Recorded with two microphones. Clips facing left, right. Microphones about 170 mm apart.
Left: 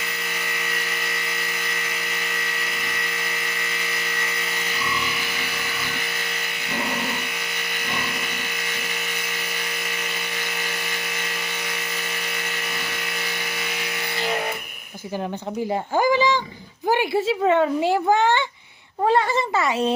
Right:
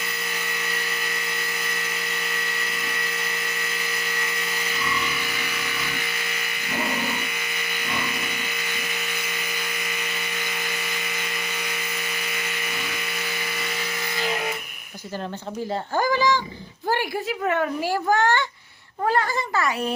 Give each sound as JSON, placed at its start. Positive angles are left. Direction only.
{"t": 16.0, "sound": "speech", "side_deg": 20}